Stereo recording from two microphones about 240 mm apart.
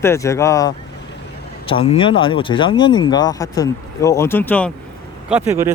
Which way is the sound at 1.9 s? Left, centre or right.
Left.